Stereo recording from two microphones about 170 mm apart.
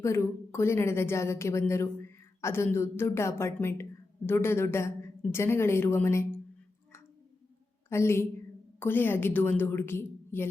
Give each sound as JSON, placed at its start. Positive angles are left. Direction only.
{"t": 0.0, "sound": "a woman's voice", "side_deg": 15}
{"t": 7.9, "sound": "a woman's voice", "side_deg": 15}